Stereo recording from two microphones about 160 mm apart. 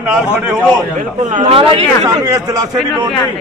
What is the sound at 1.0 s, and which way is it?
Speech, 55° right (ahead or behind).